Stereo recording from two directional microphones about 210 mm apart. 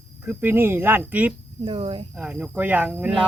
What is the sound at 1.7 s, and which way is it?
Speech, 25° right (ahead or behind).